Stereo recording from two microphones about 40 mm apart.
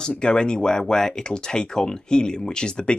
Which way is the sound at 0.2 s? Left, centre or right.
Left.